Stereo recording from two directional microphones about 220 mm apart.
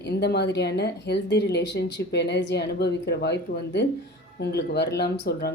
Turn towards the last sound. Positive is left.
turn(degrees=45)  # may be behind; listen again after turning